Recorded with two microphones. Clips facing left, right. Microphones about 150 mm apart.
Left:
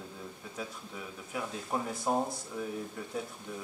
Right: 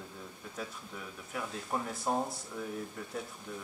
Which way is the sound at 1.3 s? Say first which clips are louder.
Left 1 dB; 5° left (ahead or behind).